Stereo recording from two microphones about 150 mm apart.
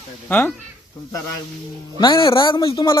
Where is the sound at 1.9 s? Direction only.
30° left (ahead or behind).